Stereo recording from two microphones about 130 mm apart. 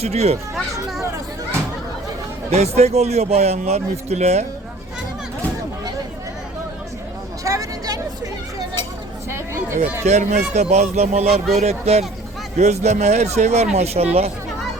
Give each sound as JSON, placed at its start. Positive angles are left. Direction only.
{"t": 0.0, "sound": "speech", "side_deg": -55}
{"t": 0.5, "sound": "children playing", "side_deg": 0}
{"t": 2.5, "sound": "speech", "side_deg": -55}
{"t": 7.4, "sound": "a sound", "side_deg": -25}
{"t": 10.1, "sound": "speech", "side_deg": -70}
{"t": 10.5, "sound": "speech", "side_deg": -60}